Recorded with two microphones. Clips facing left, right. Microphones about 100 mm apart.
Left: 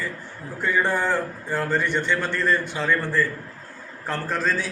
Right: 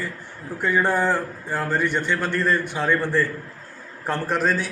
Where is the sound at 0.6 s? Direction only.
10° right (ahead or behind).